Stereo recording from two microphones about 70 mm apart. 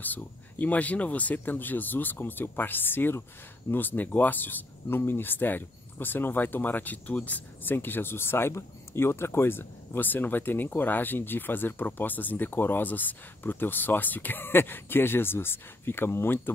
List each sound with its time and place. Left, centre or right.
0.0 s speech: left